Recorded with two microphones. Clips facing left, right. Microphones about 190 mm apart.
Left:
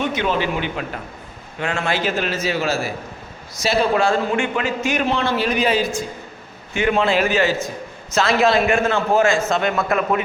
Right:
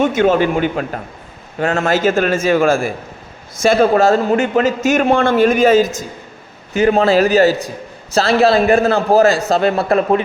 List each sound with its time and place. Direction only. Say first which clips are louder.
0.0 s a man's voice: right 8 dB; 45° right (ahead or behind)